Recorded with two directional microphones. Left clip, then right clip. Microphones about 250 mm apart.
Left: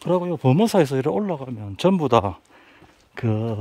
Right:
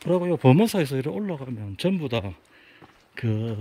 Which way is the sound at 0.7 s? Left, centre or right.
Centre.